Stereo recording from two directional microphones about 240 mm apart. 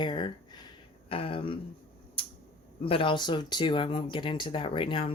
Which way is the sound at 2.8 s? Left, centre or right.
Left.